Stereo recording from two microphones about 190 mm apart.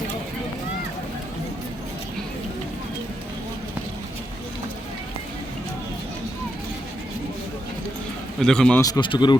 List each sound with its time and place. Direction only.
8.4 s a man's voice: 5° left (ahead or behind)
8.8 s speech: 20° left (ahead or behind)